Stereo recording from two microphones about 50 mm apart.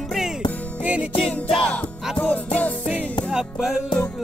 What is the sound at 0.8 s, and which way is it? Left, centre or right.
Music, right.